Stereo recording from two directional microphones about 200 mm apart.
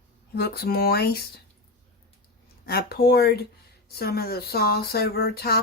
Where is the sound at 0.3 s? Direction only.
55° left (ahead or behind).